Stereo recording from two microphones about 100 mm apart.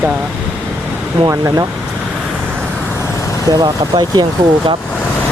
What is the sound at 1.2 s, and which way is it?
Speech, 90° right.